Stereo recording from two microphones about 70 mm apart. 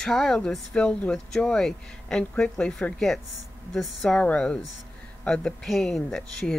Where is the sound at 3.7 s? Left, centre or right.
Centre.